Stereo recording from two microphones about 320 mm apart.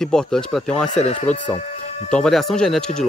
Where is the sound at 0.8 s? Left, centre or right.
Left.